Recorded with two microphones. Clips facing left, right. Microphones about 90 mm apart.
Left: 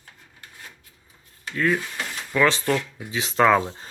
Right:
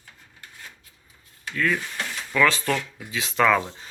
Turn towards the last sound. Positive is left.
turn(degrees=35)  # may be behind; listen again after turning